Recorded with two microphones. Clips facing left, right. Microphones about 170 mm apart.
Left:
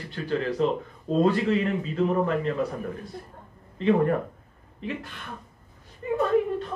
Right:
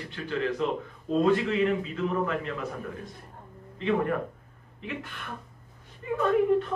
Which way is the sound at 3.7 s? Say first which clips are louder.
Left 5 dB; 40° left (ahead or behind).